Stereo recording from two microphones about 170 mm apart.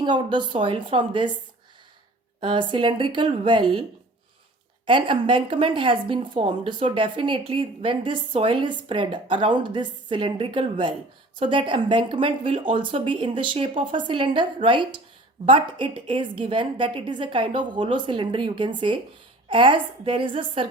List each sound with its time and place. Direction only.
0.0 s a woman's voice: 25° right (ahead or behind)
2.4 s a woman's voice: 30° right (ahead or behind)
4.9 s a woman's voice: 30° right (ahead or behind)